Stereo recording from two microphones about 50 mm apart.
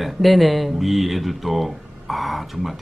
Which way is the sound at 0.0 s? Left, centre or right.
Centre.